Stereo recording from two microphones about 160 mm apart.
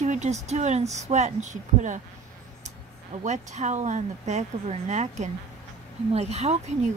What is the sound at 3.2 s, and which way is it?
Speech, 45° right (ahead or behind).